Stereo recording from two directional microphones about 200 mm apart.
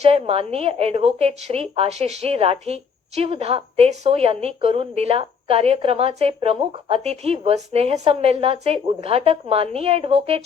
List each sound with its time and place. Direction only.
0.0 s a woman's voice: 30° right (ahead or behind)